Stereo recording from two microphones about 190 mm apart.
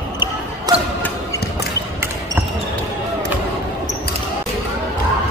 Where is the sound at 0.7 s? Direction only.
20° right (ahead or behind).